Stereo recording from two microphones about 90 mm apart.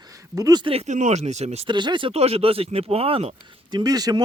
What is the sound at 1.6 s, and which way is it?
Speech, 60° right (ahead or behind).